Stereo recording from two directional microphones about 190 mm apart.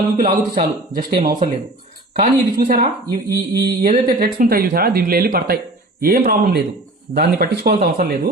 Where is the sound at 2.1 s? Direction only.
50° right (ahead or behind).